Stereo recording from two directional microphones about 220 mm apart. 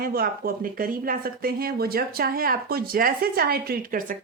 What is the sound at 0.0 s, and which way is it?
Speech, 40° right (ahead or behind).